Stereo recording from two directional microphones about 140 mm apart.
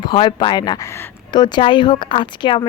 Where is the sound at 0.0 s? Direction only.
35° left (ahead or behind).